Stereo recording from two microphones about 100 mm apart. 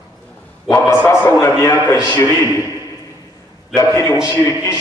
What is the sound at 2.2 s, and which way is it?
Speech, 25° left (ahead or behind).